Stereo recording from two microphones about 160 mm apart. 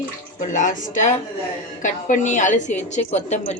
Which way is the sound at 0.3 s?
50° left (ahead or behind).